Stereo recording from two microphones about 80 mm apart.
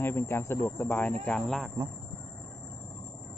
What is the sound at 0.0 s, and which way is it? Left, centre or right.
Speech, left.